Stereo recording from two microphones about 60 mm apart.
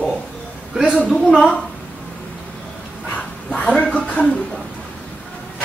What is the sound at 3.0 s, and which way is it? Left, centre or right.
Dog, left.